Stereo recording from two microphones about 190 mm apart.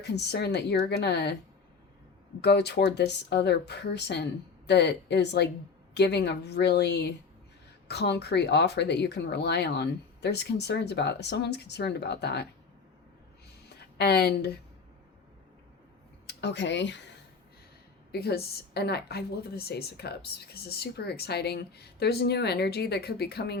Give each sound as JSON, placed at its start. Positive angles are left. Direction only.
{"t": 0.0, "sound": "speech", "side_deg": 60}
{"t": 2.4, "sound": "speech", "side_deg": 60}
{"t": 13.7, "sound": "speech", "side_deg": 60}
{"t": 16.2, "sound": "speech", "side_deg": 65}
{"t": 18.1, "sound": "speech", "side_deg": 55}